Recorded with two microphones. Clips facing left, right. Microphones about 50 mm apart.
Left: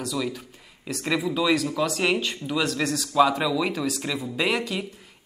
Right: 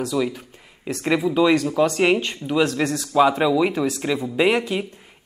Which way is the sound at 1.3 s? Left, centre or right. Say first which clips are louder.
Right 6 dB; centre.